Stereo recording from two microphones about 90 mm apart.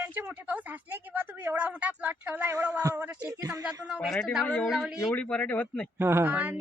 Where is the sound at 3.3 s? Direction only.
35° right (ahead or behind).